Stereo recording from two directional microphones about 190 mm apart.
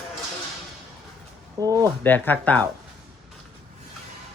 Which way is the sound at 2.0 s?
10° left (ahead or behind).